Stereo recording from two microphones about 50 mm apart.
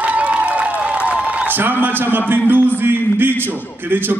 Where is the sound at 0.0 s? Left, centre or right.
Right.